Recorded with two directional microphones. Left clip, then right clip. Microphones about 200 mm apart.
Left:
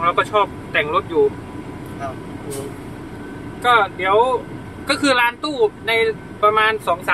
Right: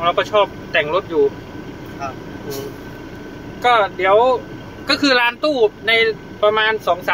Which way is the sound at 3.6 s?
20° right (ahead or behind).